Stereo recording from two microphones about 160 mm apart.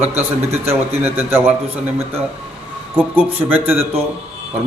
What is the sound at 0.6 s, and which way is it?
Speech, 15° right (ahead or behind).